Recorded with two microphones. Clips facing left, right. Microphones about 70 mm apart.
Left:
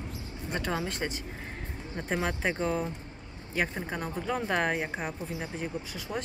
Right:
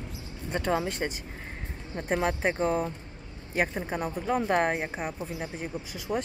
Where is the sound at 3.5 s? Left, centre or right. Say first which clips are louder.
Right 3 dB; centre.